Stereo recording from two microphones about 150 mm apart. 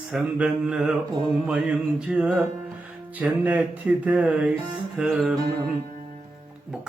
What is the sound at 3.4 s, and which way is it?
Speech, 10° right (ahead or behind).